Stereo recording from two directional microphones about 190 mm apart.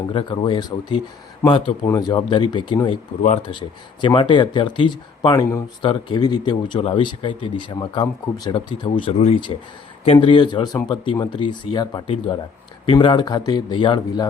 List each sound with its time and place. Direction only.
0.1 s speech: 25° left (ahead or behind)
4.0 s speech: 25° left (ahead or behind)